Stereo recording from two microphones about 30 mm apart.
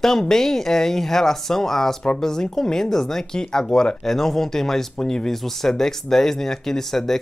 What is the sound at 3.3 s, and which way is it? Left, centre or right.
Speech, left.